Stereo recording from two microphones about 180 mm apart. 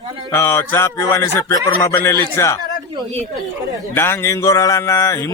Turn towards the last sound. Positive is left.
turn(degrees=20)  # may be behind; listen again after turning